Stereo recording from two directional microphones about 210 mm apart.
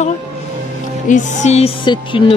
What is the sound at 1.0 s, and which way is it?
Music, 35° left (ahead or behind).